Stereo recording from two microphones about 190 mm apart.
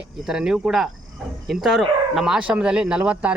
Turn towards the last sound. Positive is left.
turn(degrees=-5)  # may be behind; listen again after turning